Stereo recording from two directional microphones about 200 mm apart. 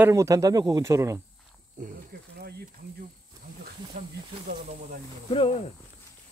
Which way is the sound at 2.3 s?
55° right (ahead or behind).